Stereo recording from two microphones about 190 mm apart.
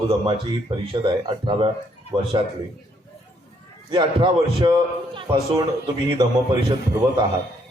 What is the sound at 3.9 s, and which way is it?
A man's voice, 25° right (ahead or behind).